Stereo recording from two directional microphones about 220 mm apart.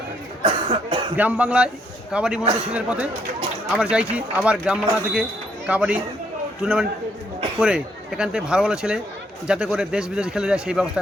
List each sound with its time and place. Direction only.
0.4 s cough: 25° right (ahead or behind)
1.1 s speech: 5° right (ahead or behind)